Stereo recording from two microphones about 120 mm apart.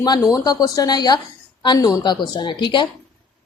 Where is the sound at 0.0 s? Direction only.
30° left (ahead or behind).